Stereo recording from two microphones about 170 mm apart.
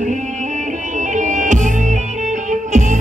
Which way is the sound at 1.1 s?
45° right (ahead or behind).